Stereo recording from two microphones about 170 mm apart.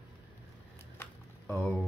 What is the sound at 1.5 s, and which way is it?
Rain, 10° left (ahead or behind).